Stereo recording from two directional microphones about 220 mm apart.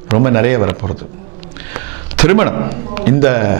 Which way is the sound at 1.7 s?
15° right (ahead or behind).